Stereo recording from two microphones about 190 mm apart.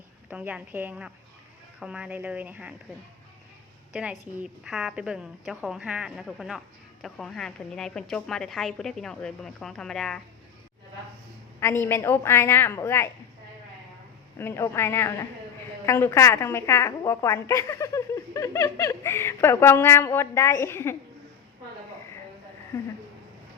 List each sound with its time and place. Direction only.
0.3 s speech: 5° right (ahead or behind)
3.9 s a woman's voice: 5° right (ahead or behind)
11.6 s a woman's voice: 10° left (ahead or behind)
14.3 s a woman's voice: 15° left (ahead or behind)